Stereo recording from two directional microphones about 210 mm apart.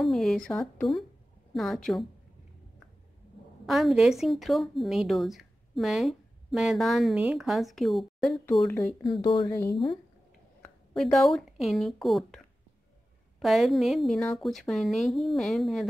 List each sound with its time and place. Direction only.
0.0 s speech: centre (ahead or behind)
3.6 s speech: centre (ahead or behind)
9.0 s speech: 25° left (ahead or behind)
10.6 s speech: centre (ahead or behind)
13.4 s speech: centre (ahead or behind)